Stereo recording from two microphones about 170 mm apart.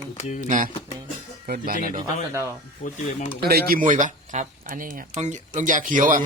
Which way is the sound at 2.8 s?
45° left (ahead or behind).